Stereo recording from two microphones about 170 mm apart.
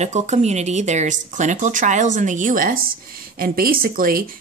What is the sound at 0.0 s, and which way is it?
Speech, 40° right (ahead or behind).